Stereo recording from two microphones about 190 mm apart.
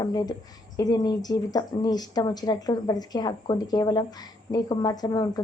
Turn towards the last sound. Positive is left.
turn(degrees=20)  # may be behind; listen again after turning